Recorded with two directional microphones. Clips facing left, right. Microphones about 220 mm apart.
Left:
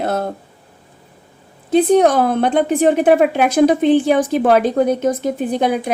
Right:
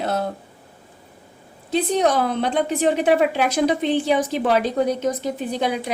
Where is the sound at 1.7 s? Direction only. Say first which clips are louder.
Left 7 dB; 50° left (ahead or behind).